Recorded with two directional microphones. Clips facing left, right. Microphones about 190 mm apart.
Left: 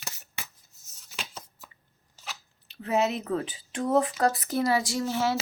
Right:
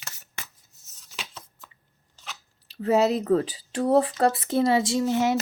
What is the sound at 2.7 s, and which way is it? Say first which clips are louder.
Speech: right 5 dB; 40° right (ahead or behind).